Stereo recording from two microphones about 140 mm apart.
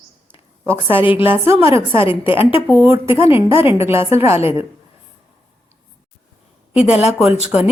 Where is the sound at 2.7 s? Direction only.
15° right (ahead or behind).